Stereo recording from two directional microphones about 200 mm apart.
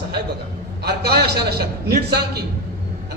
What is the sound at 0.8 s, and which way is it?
A man's voice, 55° right (ahead or behind).